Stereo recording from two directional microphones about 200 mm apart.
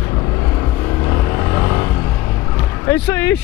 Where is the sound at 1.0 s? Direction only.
15° left (ahead or behind).